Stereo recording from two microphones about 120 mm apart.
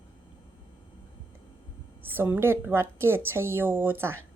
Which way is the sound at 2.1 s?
20° right (ahead or behind).